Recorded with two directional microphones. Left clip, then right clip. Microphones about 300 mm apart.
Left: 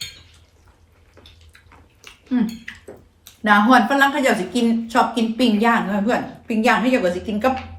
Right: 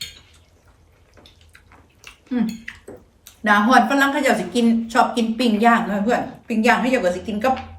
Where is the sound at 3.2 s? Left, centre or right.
Centre.